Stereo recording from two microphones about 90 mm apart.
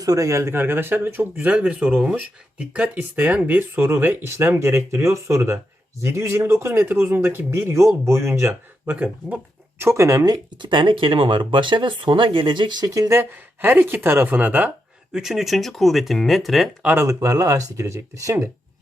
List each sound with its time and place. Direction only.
0.0 s speech: 40° right (ahead or behind)
8.9 s speech: 15° right (ahead or behind)
9.7 s speech: 30° right (ahead or behind); by 12.9 s 55° right (ahead or behind)
12.9 s speech: 35° right (ahead or behind)
13.3 s speech: 20° right (ahead or behind)
15.1 s speech: 5° right (ahead or behind)
16.8 s speech: 25° right (ahead or behind)